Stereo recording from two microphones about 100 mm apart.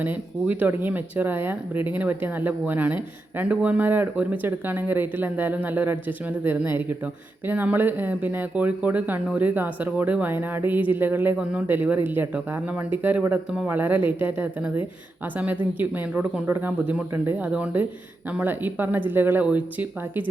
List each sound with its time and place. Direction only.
0.0 s speech: 15° right (ahead or behind)